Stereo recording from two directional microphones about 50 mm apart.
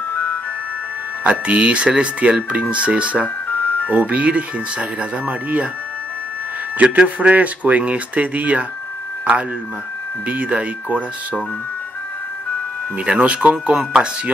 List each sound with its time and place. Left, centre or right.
0.1 s music: left
1.2 s speech: right
6.8 s speech: right
10.2 s speech: right
13.0 s speech: right